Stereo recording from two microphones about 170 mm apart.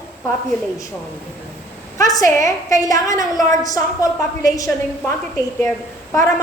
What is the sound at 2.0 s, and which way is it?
A woman's voice, 20° left (ahead or behind).